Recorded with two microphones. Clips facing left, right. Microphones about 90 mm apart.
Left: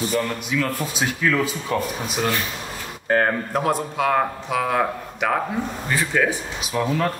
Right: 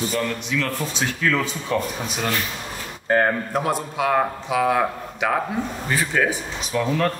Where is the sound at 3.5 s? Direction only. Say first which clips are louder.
Left 1 dB; 5° right (ahead or behind).